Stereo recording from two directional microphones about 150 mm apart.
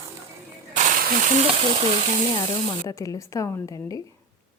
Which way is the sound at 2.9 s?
20° left (ahead or behind).